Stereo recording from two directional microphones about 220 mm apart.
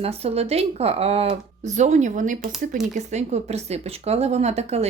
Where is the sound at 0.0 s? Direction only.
25° right (ahead or behind).